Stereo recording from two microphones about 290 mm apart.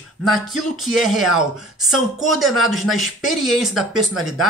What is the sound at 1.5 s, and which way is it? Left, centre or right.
Speech, centre.